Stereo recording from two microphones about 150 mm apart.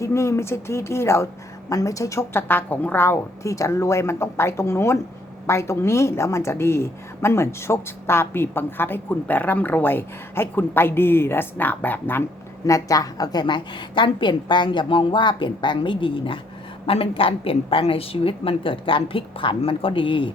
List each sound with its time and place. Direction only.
0.0 s a woman's voice: 20° left (ahead or behind)